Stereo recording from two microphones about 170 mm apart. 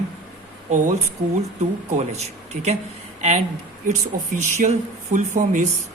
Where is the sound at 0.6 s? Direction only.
45° right (ahead or behind).